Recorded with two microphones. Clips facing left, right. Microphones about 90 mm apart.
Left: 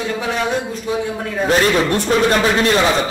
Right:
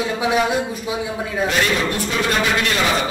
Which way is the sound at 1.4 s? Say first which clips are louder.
Left 6 dB; 35° left (ahead or behind).